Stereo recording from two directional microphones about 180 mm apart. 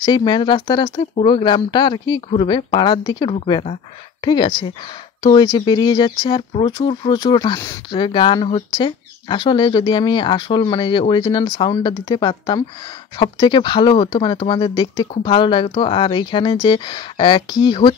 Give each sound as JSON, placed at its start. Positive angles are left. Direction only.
{"t": 0.0, "sound": "speech", "side_deg": 25}